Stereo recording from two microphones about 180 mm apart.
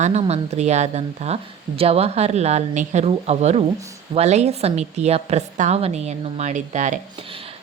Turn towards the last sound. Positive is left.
turn(degrees=-30)  # may be behind; listen again after turning